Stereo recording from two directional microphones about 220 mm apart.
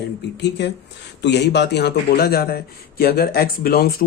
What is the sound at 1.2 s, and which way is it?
Speech, 50° left (ahead or behind).